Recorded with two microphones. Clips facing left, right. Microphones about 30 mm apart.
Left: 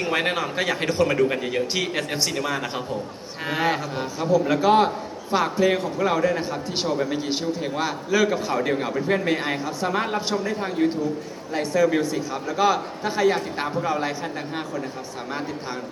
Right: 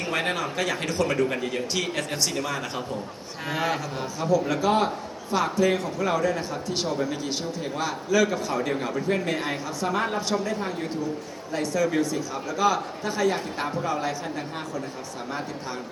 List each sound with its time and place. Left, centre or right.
0.0 s a man's voice: centre